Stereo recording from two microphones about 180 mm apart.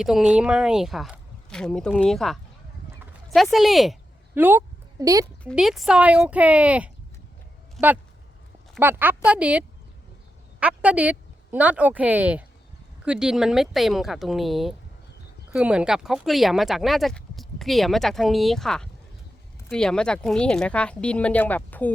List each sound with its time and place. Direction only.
0.0 s speech: 5° right (ahead or behind)
4.4 s speech: 10° right (ahead or behind)
5.4 s speech: centre (ahead or behind)
8.8 s speech: 10° right (ahead or behind); by 21.9 s 10° left (ahead or behind)